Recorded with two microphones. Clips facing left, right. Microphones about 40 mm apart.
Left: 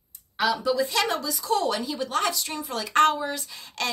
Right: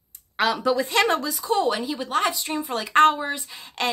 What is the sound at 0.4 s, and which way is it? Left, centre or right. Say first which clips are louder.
Speech: right 2 dB; right.